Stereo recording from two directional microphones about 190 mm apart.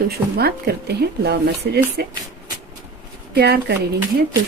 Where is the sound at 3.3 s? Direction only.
60° right (ahead or behind).